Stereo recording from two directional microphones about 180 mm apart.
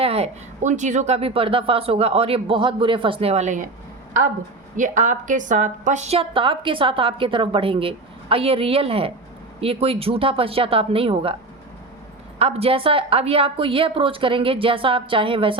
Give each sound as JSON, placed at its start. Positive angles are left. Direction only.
{"t": 0.0, "sound": "a woman's voice", "side_deg": -35}
{"t": 4.8, "sound": "a woman's voice", "side_deg": -45}
{"t": 12.4, "sound": "a woman's voice", "side_deg": -35}